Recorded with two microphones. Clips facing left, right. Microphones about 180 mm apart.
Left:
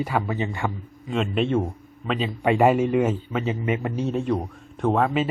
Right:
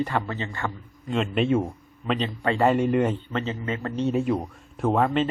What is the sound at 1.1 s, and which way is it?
A man's voice, centre (ahead or behind).